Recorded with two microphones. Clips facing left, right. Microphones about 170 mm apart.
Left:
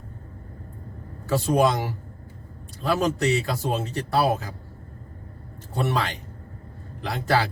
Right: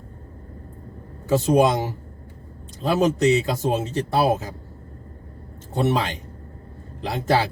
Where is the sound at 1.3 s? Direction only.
20° right (ahead or behind).